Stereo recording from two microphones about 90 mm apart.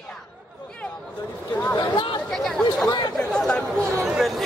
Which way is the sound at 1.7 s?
50° left (ahead or behind).